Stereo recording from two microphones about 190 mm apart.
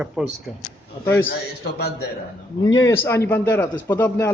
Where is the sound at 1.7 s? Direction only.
55° left (ahead or behind).